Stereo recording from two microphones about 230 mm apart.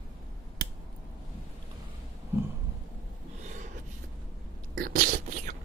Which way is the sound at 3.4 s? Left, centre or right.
Right.